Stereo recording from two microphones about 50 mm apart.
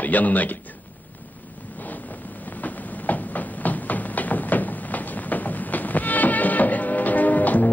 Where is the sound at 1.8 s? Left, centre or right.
Left.